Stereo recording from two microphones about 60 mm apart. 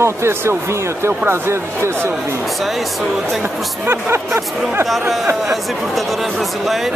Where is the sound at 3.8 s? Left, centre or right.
Right.